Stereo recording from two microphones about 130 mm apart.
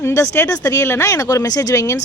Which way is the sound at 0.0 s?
25° left (ahead or behind).